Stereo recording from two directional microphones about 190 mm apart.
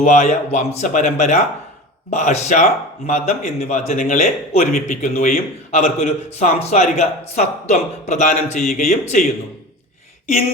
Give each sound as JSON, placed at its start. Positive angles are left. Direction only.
{"t": 0.0, "sound": "a man's voice", "side_deg": 35}